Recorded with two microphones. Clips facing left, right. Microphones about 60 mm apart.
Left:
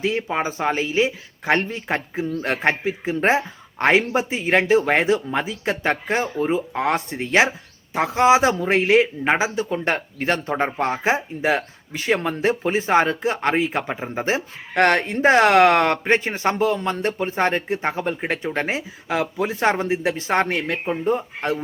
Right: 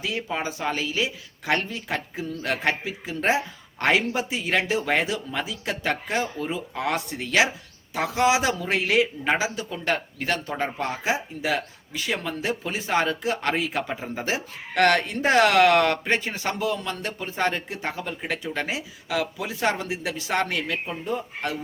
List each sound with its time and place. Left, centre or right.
0.0 s speech: left